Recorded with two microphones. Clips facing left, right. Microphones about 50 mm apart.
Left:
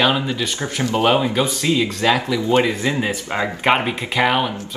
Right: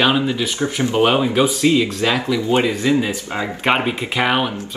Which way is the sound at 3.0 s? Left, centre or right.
Left.